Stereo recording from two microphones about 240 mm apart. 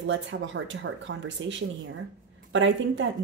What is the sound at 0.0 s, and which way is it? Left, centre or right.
A woman's voice, right.